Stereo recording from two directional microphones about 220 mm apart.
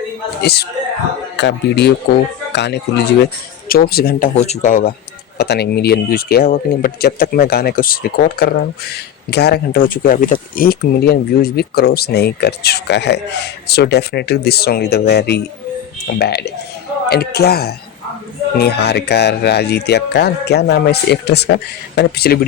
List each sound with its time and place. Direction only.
0.4 s speech: 45° left (ahead or behind)
4.4 s speech: 30° left (ahead or behind)
5.4 s speech: 45° left (ahead or behind)